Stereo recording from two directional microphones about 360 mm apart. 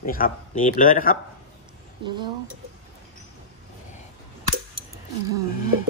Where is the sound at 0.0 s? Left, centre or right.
Left.